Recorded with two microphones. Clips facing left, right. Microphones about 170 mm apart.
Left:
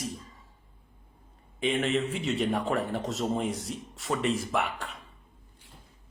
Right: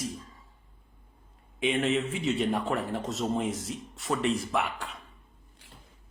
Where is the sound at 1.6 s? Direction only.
Centre (ahead or behind).